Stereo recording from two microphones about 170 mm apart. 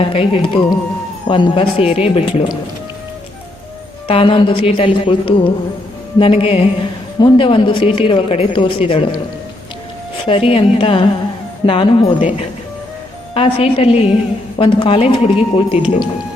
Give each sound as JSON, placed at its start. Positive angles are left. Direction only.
{"t": 0.0, "sound": "speech", "side_deg": 35}
{"t": 4.1, "sound": "speech", "side_deg": 30}
{"t": 10.2, "sound": "speech", "side_deg": 35}